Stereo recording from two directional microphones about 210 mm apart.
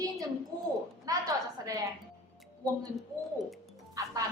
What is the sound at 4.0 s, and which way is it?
Music, 15° right (ahead or behind).